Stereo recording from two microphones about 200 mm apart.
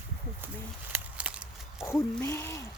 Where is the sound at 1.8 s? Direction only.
10° left (ahead or behind).